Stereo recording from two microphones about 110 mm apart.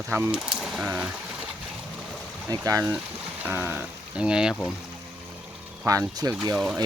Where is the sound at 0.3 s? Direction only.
5° right (ahead or behind).